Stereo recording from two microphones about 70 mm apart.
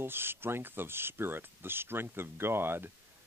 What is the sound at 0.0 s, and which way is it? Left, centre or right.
Speech, right.